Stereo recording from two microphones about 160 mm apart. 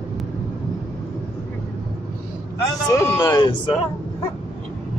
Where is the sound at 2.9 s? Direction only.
15° left (ahead or behind).